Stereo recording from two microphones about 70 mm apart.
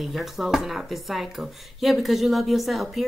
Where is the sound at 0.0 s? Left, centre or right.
Centre.